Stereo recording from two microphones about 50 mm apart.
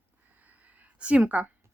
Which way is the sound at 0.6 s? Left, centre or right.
Right.